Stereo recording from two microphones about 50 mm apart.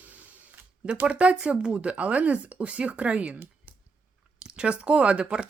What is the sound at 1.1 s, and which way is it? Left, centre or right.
Speech, right.